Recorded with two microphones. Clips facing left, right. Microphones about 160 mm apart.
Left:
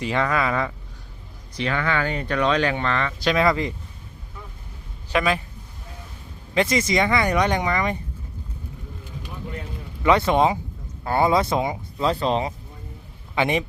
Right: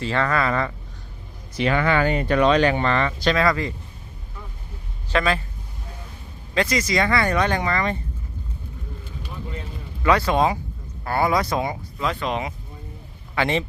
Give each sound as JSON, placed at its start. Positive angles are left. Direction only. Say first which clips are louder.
{"t": 0.0, "sound": "speech", "louder": "even", "side_deg": 15}
{"t": 1.5, "sound": "speech", "louder": "right 4 dB", "side_deg": -10}
{"t": 3.2, "sound": "speech", "louder": "left 2 dB", "side_deg": 20}
{"t": 5.0, "sound": "a man's voice", "louder": "even", "side_deg": 15}
{"t": 6.5, "sound": "speech", "louder": "left 1 dB", "side_deg": 20}
{"t": 10.0, "sound": "speech", "louder": "left 1 dB", "side_deg": 20}
{"t": 11.9, "sound": "speech", "louder": "left 4 dB", "side_deg": 30}
{"t": 13.3, "sound": "speech", "louder": "even", "side_deg": 15}